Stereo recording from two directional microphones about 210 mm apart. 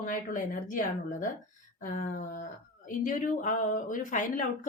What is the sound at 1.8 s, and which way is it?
A woman's voice, 40° left (ahead or behind).